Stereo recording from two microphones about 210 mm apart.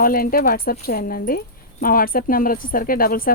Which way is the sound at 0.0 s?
45° left (ahead or behind).